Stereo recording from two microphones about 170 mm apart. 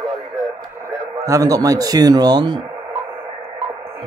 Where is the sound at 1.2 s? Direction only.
20° right (ahead or behind).